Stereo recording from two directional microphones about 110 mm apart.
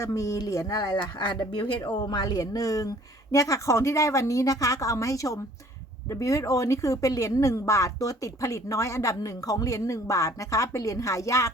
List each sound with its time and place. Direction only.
0.0 s speech: 30° left (ahead or behind)